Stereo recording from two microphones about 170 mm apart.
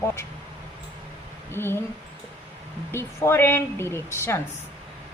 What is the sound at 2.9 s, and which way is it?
Speech, 15° left (ahead or behind).